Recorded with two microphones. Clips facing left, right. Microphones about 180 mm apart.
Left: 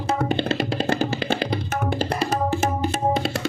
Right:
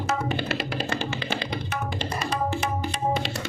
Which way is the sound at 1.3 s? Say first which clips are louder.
Left 6 dB; 55° left (ahead or behind).